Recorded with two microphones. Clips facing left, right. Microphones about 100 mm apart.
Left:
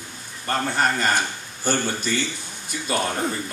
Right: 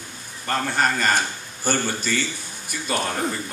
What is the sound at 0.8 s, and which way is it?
Speech, 20° left (ahead or behind).